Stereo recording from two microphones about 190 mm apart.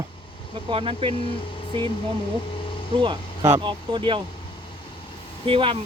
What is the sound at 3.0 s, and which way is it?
Speech, 25° right (ahead or behind).